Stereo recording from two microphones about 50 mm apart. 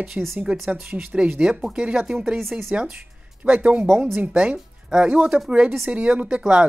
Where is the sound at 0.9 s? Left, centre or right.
Centre.